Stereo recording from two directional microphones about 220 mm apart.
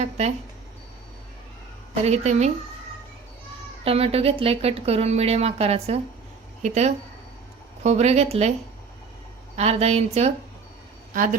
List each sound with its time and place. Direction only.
0.0 s speech: 30° right (ahead or behind)
2.0 s speech: 30° right (ahead or behind)
3.8 s speech: 25° right (ahead or behind)
9.6 s speech: 30° right (ahead or behind)